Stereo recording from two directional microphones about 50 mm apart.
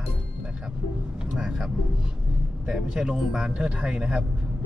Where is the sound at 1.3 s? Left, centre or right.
Centre.